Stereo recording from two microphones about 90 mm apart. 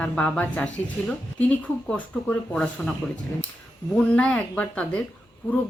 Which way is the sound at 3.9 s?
15° left (ahead or behind).